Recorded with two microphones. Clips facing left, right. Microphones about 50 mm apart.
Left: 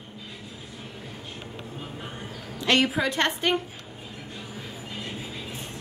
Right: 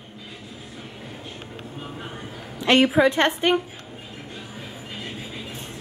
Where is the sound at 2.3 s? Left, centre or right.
Centre.